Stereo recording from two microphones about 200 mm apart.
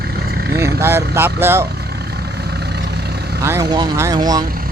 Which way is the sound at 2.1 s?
55° right (ahead or behind).